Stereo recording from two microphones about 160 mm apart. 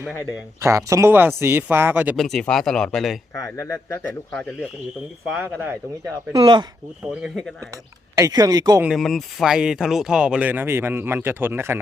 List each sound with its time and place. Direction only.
0.6 s speech: 20° right (ahead or behind)
2.1 s speech: 5° left (ahead or behind)
3.3 s speech: 20° left (ahead or behind)
5.4 s speech: 15° right (ahead or behind)
6.3 s speech: 25° right (ahead or behind)
7.0 s speech: 5° right (ahead or behind)
7.7 s speech: 20° right (ahead or behind)
8.8 s speech: centre (ahead or behind)